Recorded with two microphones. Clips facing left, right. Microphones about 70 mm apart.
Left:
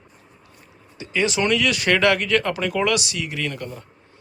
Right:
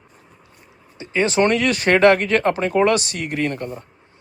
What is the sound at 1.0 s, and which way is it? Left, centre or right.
Speech, right.